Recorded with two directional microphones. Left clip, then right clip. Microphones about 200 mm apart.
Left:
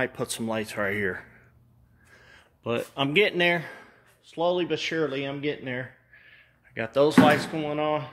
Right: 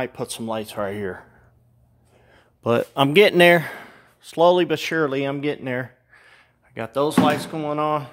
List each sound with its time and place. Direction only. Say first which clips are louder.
0.0 s speech: right 1 dB; 15° right (ahead or behind)
2.6 s speech: right 8 dB; 45° right (ahead or behind)
6.7 s speech: even; 20° right (ahead or behind)
7.5 s speech: right 4 dB; 35° right (ahead or behind)